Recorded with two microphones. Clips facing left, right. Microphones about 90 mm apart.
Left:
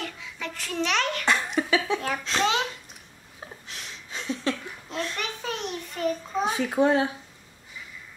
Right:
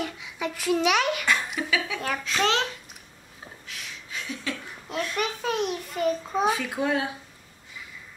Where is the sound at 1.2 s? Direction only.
30° left (ahead or behind).